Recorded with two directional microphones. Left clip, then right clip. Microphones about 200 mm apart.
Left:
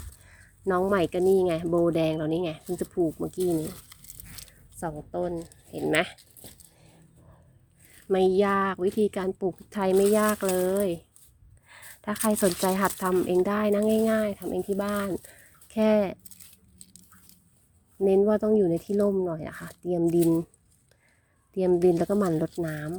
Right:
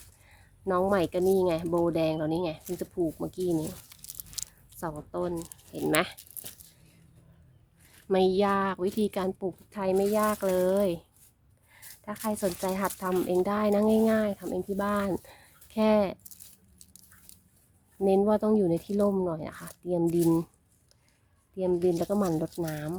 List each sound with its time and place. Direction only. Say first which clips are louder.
0.3 s speech: left 3 dB; 5° left (ahead or behind)
4.8 s speech: left 2 dB; centre (ahead or behind)
8.1 s speech: left 2 dB; centre (ahead or behind)
9.6 s speech: left 5 dB; 15° left (ahead or behind); by 11.0 s centre (ahead or behind)
11.7 s a sound: left 6 dB; 20° left (ahead or behind)
12.2 s speech: left 5 dB; 20° left (ahead or behind); by 15.1 s 5° left (ahead or behind)
15.3 s a sound: left 2 dB; 5° left (ahead or behind)
18.0 s speech: left 2 dB; 5° left (ahead or behind)
21.7 s speech: left 4 dB; 15° left (ahead or behind)